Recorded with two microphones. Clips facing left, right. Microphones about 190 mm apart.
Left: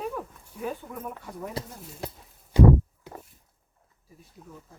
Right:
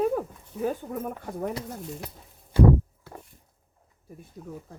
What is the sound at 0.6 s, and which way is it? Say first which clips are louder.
Speech: right 5 dB; 45° right (ahead or behind).